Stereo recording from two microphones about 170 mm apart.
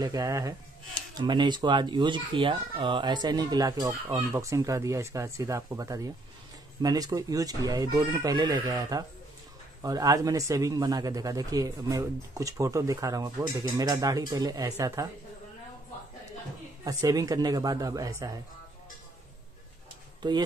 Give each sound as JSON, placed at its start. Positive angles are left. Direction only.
{"t": 0.0, "sound": "speech", "side_deg": -20}
{"t": 16.8, "sound": "speech", "side_deg": -20}
{"t": 20.2, "sound": "speech", "side_deg": -25}